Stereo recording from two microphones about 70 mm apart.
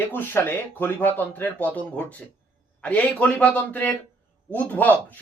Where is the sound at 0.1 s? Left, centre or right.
Left.